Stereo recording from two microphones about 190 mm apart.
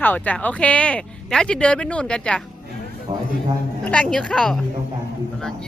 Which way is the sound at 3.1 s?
30° right (ahead or behind).